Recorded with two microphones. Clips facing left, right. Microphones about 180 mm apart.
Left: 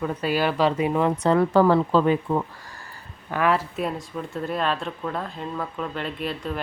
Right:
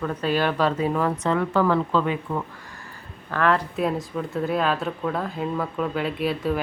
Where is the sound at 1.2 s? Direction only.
35° left (ahead or behind).